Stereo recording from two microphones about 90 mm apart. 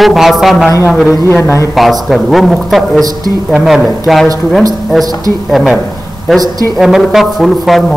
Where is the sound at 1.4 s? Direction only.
30° left (ahead or behind).